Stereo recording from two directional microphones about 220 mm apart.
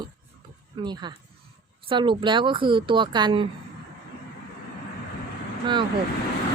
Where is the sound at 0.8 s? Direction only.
20° right (ahead or behind).